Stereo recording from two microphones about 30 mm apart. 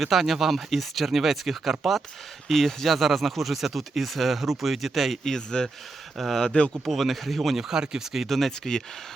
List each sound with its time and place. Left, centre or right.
0.0 s speech: centre
5.2 s speech: left
6.1 s speech: centre
7.5 s speech: centre
8.3 s speech: centre